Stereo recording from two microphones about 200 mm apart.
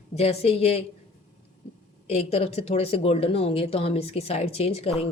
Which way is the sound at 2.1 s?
30° left (ahead or behind).